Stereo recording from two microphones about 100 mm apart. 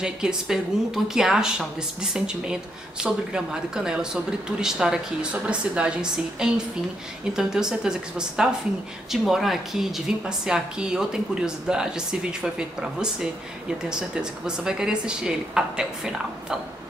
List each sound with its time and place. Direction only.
0.0 s a woman's voice: 5° right (ahead or behind)